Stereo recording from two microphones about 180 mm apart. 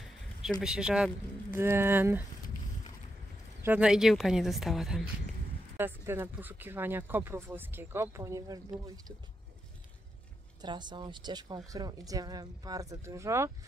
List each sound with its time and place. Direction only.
0.6 s speech: 5° right (ahead or behind)
3.6 s a woman's voice: 5° right (ahead or behind)
5.8 s speech: 10° right (ahead or behind)
10.6 s speech: 25° right (ahead or behind)